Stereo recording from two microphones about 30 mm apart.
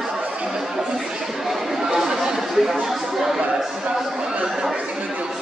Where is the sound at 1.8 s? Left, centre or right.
Centre.